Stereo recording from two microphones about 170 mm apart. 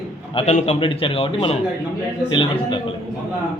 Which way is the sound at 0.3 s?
40° left (ahead or behind).